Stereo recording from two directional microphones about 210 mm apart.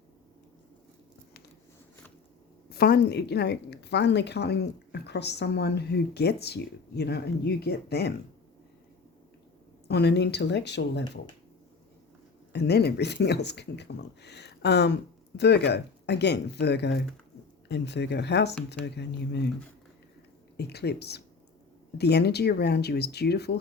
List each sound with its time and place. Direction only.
2.6 s a woman's voice: 50° left (ahead or behind)
9.9 s a woman's voice: 50° left (ahead or behind)
12.5 s a woman's voice: 50° left (ahead or behind)
20.6 s a woman's voice: 50° left (ahead or behind)